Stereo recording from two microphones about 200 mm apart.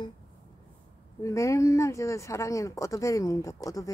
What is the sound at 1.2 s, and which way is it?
Speech, 15° left (ahead or behind).